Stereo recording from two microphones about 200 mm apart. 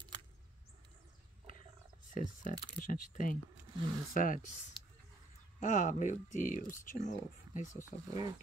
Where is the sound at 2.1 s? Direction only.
40° left (ahead or behind).